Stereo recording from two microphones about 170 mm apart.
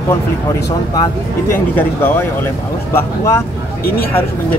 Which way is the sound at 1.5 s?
15° left (ahead or behind).